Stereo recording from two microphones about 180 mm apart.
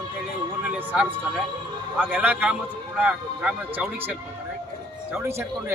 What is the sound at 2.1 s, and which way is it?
Speech, 10° right (ahead or behind).